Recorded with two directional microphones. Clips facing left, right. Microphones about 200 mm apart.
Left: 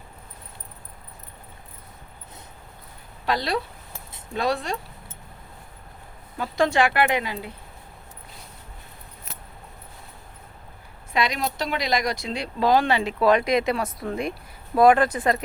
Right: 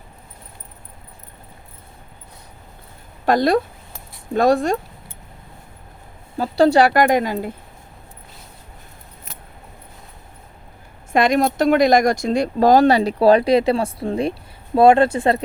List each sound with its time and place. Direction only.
3.2 s speech: 50° right (ahead or behind)
6.3 s speech: 35° right (ahead or behind)
11.1 s speech: 50° right (ahead or behind); by 15.4 s 30° right (ahead or behind)